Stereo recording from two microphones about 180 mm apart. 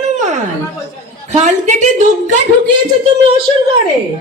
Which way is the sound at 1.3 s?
40° right (ahead or behind).